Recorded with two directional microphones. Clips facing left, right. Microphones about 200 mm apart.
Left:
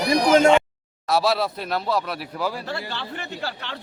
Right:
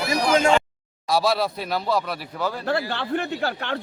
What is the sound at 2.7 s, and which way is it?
Speech, 55° right (ahead or behind).